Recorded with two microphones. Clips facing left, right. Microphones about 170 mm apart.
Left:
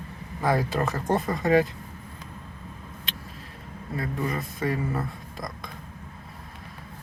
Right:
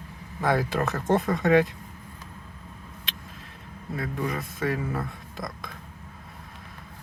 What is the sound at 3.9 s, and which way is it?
Speech, centre (ahead or behind).